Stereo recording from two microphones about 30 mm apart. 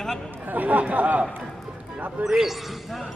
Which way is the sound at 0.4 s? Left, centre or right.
Right.